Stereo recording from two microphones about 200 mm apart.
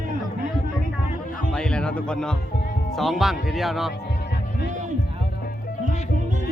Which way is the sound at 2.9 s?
Centre (ahead or behind).